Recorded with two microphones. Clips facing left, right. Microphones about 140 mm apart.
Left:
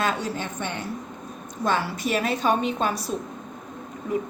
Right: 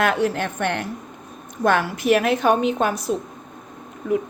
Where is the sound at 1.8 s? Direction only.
55° right (ahead or behind).